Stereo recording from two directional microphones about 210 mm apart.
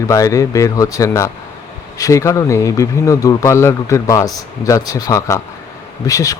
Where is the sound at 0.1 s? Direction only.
15° left (ahead or behind).